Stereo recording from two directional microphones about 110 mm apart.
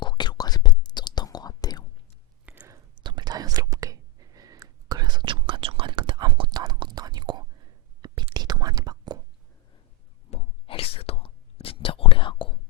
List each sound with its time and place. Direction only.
0.0 s whispering: 45° left (ahead or behind)
2.5 s whispering: 10° right (ahead or behind)
3.0 s whispering: 45° right (ahead or behind)
6.5 s whispering: 40° right (ahead or behind)
10.3 s whispering: 60° left (ahead or behind)